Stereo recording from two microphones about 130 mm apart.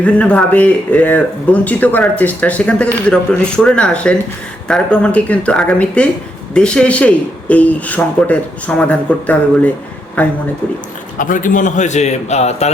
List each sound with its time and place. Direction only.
0.0 s speech: 10° left (ahead or behind)
11.2 s a man's voice: 90° left; by 12.7 s 55° left (ahead or behind)